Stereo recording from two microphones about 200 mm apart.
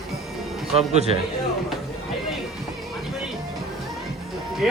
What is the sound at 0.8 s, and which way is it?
Speech, 30° right (ahead or behind).